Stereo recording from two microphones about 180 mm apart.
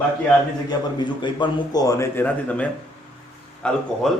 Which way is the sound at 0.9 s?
25° left (ahead or behind).